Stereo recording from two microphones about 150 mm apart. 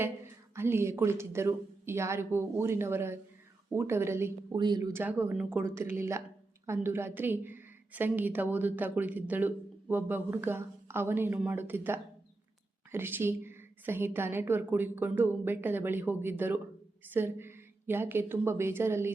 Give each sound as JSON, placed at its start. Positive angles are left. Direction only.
{"t": 0.5, "sound": "a woman's voice", "side_deg": -15}
{"t": 4.5, "sound": "speech", "side_deg": -30}
{"t": 4.9, "sound": "a woman's voice", "side_deg": -15}